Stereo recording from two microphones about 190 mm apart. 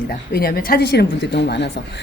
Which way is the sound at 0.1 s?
50° left (ahead or behind).